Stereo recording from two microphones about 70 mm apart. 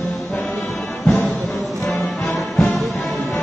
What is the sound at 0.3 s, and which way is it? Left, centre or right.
Brass instrument, left.